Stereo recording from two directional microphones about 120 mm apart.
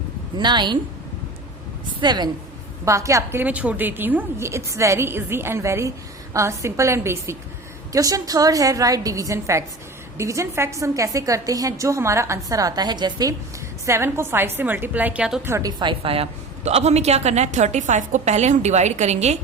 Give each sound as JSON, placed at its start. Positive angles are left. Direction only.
{"t": 0.3, "sound": "a woman's voice", "side_deg": -40}
{"t": 2.0, "sound": "a woman's voice", "side_deg": -35}
{"t": 2.8, "sound": "a woman's voice", "side_deg": -25}
{"t": 3.4, "sound": "a woman's voice", "side_deg": -10}
{"t": 13.8, "sound": "a woman's voice", "side_deg": -20}
{"t": 15.4, "sound": "a woman's voice", "side_deg": -25}
{"t": 15.8, "sound": "a woman's voice", "side_deg": -45}